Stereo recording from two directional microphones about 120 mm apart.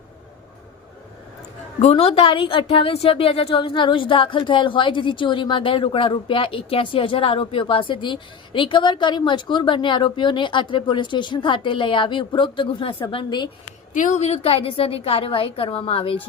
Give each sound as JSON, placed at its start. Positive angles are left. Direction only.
{"t": 1.8, "sound": "a woman's voice", "side_deg": 60}
{"t": 13.9, "sound": "a woman's voice", "side_deg": 90}